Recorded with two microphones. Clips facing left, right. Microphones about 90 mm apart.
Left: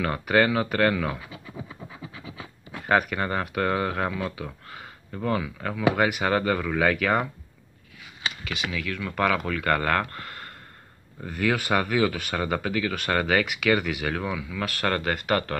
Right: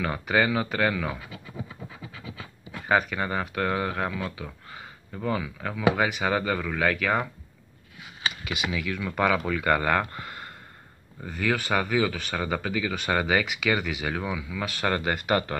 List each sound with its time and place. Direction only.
0.0 s speech: centre (ahead or behind)
2.2 s speech: 5° left (ahead or behind)
8.2 s computer keyboard: 10° right (ahead or behind)
8.6 s speech: 10° right (ahead or behind)
11.2 s speech: centre (ahead or behind)